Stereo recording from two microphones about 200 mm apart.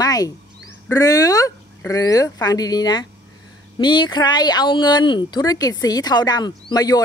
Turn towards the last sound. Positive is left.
turn(degrees=20)  # may be behind; listen again after turning